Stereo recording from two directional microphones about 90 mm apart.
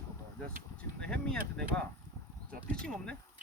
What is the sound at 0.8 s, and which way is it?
Speech, 10° left (ahead or behind).